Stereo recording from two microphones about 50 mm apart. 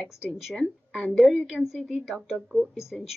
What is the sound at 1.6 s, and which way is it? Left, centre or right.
Speech, centre.